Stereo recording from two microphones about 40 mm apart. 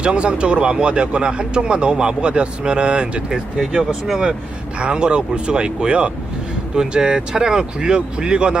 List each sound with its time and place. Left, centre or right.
0.0 s speech: right
3.6 s speech: centre
4.8 s speech: right